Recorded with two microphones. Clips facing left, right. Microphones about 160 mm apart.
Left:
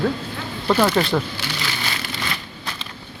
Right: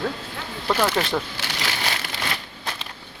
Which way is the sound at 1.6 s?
75° right (ahead or behind).